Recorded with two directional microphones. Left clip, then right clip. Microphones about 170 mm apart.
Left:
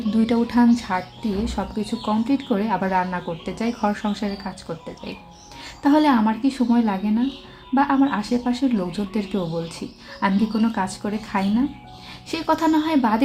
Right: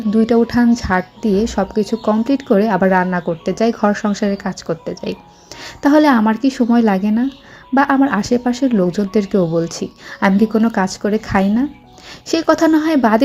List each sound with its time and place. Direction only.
0.3 s speech: 30° right (ahead or behind)